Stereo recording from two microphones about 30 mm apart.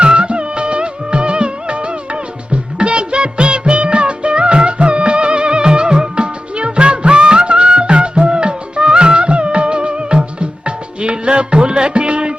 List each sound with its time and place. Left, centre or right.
0.0 s music of bollywood: right
2.5 s music: right